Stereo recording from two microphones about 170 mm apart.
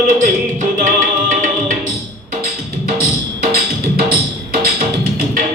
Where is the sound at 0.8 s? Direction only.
50° right (ahead or behind).